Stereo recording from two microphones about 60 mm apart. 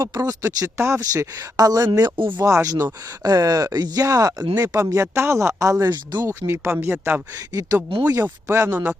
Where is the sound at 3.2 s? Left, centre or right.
Right.